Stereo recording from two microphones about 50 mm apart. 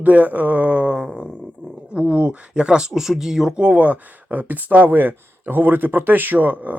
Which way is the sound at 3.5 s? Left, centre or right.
Right.